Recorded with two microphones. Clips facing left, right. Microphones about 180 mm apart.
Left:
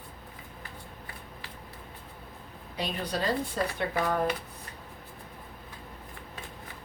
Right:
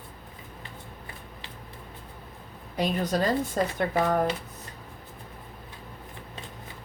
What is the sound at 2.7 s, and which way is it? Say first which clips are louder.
A woman's voice: right 6 dB; 45° right (ahead or behind).